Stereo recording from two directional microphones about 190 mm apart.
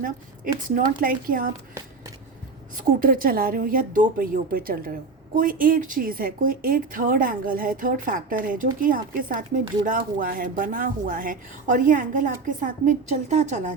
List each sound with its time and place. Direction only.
1.0 s a woman's voice: 50° right (ahead or behind)
2.7 s a woman's voice: 50° right (ahead or behind)